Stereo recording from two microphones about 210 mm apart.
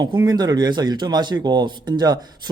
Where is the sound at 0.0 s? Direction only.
20° right (ahead or behind).